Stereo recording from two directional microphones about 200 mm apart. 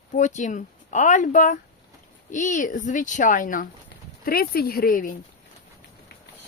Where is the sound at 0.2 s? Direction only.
40° left (ahead or behind).